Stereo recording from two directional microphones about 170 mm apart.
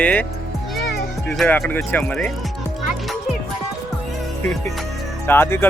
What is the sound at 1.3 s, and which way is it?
Speech, 5° left (ahead or behind).